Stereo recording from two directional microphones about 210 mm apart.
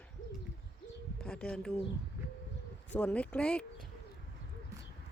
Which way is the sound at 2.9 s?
5° left (ahead or behind).